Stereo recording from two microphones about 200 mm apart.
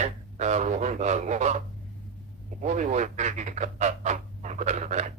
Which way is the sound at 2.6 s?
35° right (ahead or behind).